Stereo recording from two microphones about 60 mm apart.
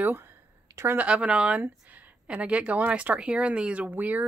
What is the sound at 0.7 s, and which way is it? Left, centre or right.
Speech, right.